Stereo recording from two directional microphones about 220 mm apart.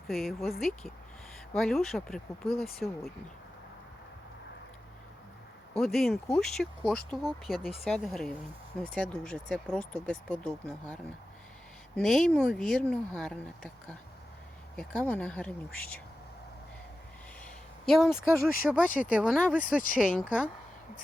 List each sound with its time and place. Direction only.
0.1 s speech: centre (ahead or behind)
5.7 s speech: centre (ahead or behind)
14.8 s speech: 5° left (ahead or behind)
17.8 s speech: centre (ahead or behind)
18.9 s speech: 40° left (ahead or behind)
19.1 s speech: centre (ahead or behind)
19.5 s speech: 40° left (ahead or behind)
20.1 s speech: 5° right (ahead or behind)